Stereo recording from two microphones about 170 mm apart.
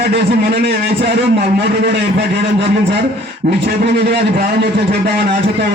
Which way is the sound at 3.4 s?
60° right (ahead or behind).